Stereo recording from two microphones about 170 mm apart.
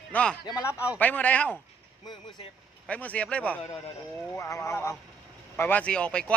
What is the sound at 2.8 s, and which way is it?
Speech, 10° left (ahead or behind).